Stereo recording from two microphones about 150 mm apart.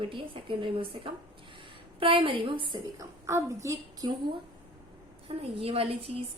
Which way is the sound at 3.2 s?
20° right (ahead or behind).